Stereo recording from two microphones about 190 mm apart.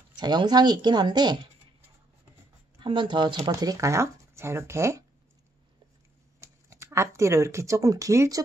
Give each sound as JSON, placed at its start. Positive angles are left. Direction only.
{"t": 0.1, "sound": "speech", "side_deg": -20}
{"t": 2.8, "sound": "speech", "side_deg": -25}
{"t": 6.4, "sound": "speech", "side_deg": -15}